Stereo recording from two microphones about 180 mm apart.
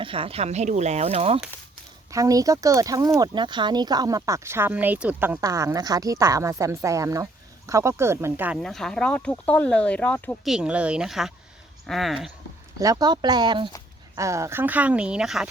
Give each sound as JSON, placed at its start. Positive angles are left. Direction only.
{"t": 0.0, "sound": "speech", "side_deg": -30}
{"t": 2.0, "sound": "speech", "side_deg": -20}
{"t": 8.5, "sound": "speech", "side_deg": 0}
{"t": 10.4, "sound": "speech", "side_deg": -5}
{"t": 12.8, "sound": "speech", "side_deg": -20}